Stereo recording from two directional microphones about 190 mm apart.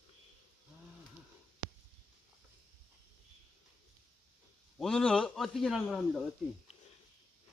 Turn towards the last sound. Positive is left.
turn(degrees=0)  # may be behind; listen again after turning